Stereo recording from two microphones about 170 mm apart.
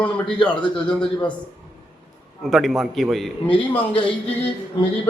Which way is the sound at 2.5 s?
Centre (ahead or behind).